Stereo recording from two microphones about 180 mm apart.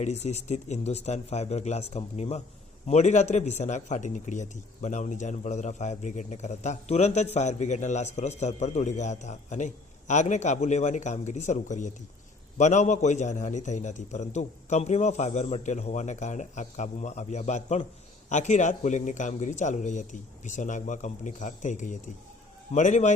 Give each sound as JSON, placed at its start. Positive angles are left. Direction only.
{"t": 0.0, "sound": "a man's voice", "side_deg": 40}